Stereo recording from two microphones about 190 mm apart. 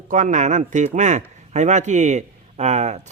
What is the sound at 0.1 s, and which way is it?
Speech, 40° right (ahead or behind).